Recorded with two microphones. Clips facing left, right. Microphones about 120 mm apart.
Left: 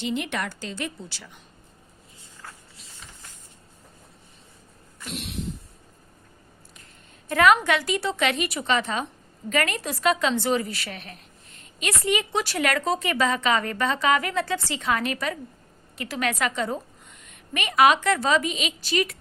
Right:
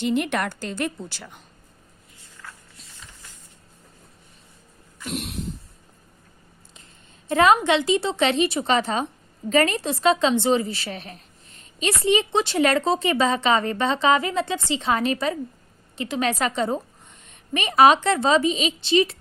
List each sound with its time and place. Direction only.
0.0 s a woman's voice: 50° right (ahead or behind)
5.0 s a sound: 45° right (ahead or behind)
7.3 s speech: 25° right (ahead or behind)